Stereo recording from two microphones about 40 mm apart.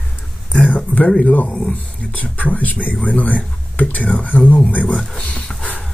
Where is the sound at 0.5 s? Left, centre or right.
Left.